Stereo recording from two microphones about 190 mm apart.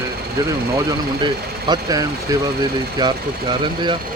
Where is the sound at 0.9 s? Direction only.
20° right (ahead or behind).